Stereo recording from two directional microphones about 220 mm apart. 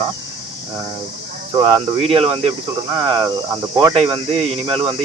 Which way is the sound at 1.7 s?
25° right (ahead or behind).